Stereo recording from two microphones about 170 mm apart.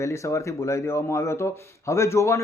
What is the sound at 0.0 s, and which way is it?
A man's voice, 15° left (ahead or behind).